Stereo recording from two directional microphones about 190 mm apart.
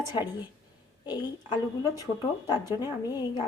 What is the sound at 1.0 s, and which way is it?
A woman's voice, 20° left (ahead or behind).